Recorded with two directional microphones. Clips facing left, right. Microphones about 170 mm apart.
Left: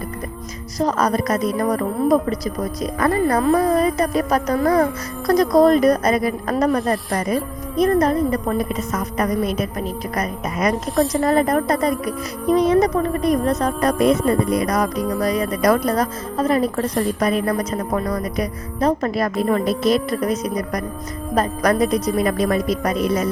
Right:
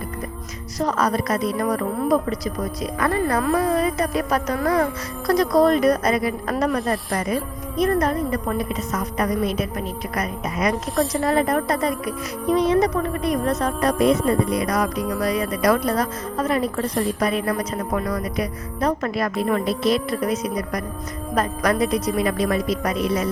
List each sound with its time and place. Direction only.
0.8 s speech: 40° left (ahead or behind)
8.5 s a woman's voice: 45° left (ahead or behind)
10.9 s a woman's voice: centre (ahead or behind)
11.2 s a woman's voice: 40° left (ahead or behind)
14.0 s a woman's voice: 50° left (ahead or behind)
16.8 s a woman's voice: centre (ahead or behind)
17.2 s a woman's voice: 45° left (ahead or behind)